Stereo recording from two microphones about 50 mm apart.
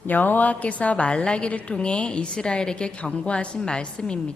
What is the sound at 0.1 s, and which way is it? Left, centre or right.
A woman's voice, left.